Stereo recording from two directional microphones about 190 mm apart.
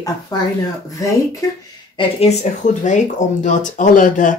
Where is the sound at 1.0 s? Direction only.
15° left (ahead or behind).